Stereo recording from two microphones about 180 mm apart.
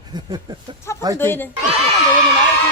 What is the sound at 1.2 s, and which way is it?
Speech, 10° left (ahead or behind).